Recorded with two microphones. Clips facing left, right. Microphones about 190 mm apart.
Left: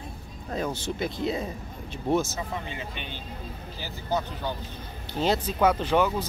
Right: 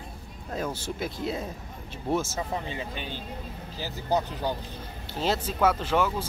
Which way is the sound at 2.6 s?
35° right (ahead or behind).